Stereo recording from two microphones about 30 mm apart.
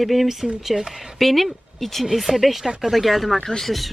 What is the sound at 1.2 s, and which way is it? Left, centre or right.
Speech, centre.